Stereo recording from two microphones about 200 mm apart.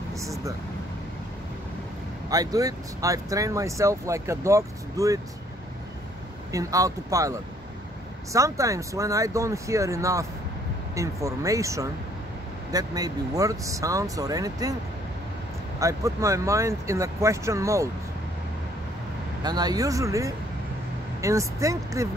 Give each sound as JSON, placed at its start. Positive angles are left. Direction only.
{"t": 0.1, "sound": "vehicle", "side_deg": -15}
{"t": 2.2, "sound": "speech", "side_deg": -20}
{"t": 6.5, "sound": "speech", "side_deg": -15}
{"t": 15.8, "sound": "speech", "side_deg": -15}
{"t": 19.4, "sound": "speech", "side_deg": -20}